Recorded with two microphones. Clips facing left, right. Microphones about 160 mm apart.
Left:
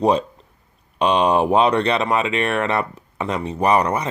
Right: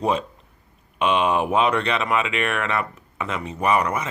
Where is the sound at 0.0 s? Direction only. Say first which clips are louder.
Left 5 dB; 35° left (ahead or behind).